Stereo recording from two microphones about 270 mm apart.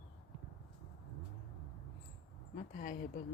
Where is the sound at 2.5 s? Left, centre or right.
Left.